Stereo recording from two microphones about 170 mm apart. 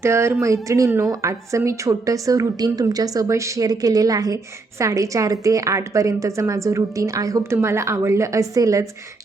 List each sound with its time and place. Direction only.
0.0 s a woman's voice: 15° right (ahead or behind)